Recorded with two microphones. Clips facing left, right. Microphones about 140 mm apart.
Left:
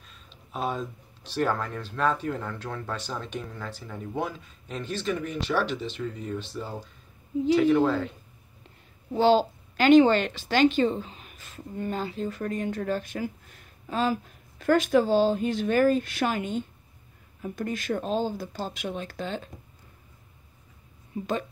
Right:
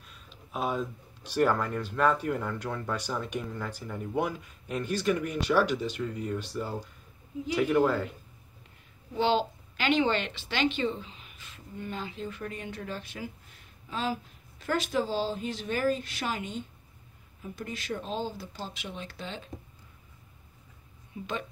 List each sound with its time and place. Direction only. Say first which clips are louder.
0.0 s speech: right 1 dB; 10° right (ahead or behind)
9.1 s a woman's voice: left 6 dB; 40° left (ahead or behind)
21.1 s a woman's voice: left 7 dB; 40° left (ahead or behind)